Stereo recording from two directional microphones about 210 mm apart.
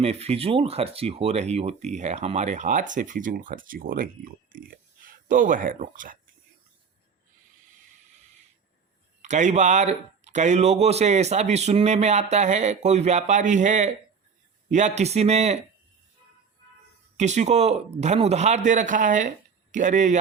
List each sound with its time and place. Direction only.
0.0 s speech: 30° right (ahead or behind)
9.2 s speech: 35° right (ahead or behind)
17.2 s speech: 35° right (ahead or behind)